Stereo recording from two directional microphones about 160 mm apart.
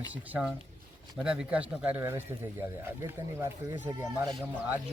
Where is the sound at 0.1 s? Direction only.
10° right (ahead or behind).